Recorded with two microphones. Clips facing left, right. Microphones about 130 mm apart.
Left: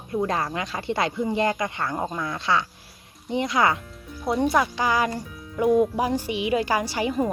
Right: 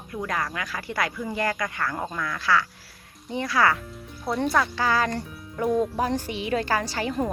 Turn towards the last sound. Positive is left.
turn(degrees=10)  # may be behind; listen again after turning